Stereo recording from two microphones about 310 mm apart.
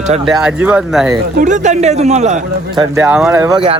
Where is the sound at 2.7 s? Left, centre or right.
Centre.